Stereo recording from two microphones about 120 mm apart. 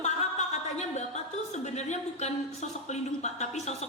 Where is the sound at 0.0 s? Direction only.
70° left (ahead or behind).